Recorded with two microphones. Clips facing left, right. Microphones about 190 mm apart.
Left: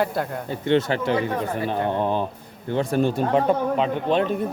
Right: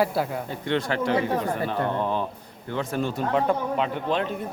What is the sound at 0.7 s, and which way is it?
Speech, 25° left (ahead or behind).